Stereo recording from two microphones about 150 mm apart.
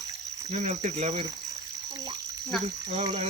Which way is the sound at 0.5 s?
50° right (ahead or behind).